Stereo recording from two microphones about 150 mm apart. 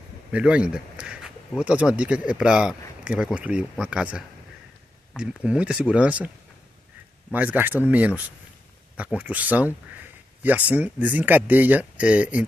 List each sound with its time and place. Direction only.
0.3 s speech: 5° right (ahead or behind)
7.3 s speech: 10° right (ahead or behind)